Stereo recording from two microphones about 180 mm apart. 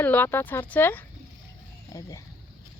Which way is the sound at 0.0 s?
10° left (ahead or behind).